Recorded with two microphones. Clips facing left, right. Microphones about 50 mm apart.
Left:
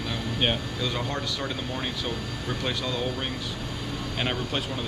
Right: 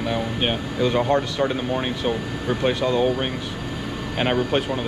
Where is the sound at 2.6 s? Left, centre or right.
Right.